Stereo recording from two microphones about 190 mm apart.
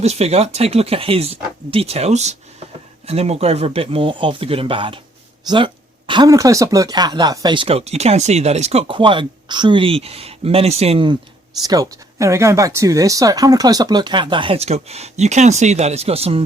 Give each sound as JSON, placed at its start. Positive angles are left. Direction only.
{"t": 0.0, "sound": "speech", "side_deg": -35}